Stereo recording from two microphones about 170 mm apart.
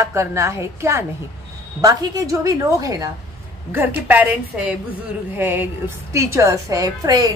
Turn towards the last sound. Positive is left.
turn(degrees=-20)  # may be behind; listen again after turning